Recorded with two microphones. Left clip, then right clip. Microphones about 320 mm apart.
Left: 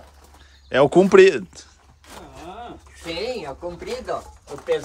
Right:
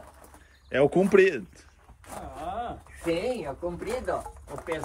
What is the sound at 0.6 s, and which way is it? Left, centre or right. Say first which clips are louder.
Speech: left 7 dB; centre.